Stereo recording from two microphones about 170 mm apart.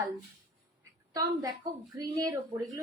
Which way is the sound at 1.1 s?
20° right (ahead or behind).